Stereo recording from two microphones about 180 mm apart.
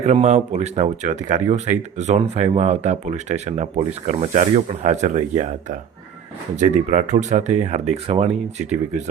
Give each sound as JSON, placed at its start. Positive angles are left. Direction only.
{"t": 0.0, "sound": "speech", "side_deg": -40}
{"t": 6.9, "sound": "speech", "side_deg": -40}